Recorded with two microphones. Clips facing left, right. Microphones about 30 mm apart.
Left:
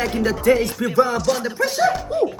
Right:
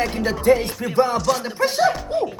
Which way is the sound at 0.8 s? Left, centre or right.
Left.